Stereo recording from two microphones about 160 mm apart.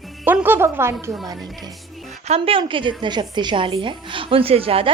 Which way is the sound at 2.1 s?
40° right (ahead or behind).